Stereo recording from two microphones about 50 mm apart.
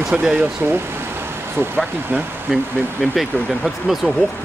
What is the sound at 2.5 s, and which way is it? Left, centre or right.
Speech, centre.